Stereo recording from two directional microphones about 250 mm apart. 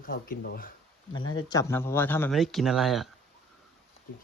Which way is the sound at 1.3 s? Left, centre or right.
Centre.